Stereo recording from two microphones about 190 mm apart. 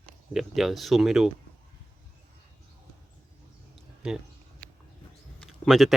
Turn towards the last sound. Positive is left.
turn(degrees=0)  # may be behind; listen again after turning